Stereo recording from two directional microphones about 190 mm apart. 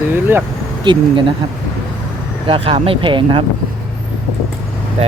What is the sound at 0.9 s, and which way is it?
Speech, 25° right (ahead or behind).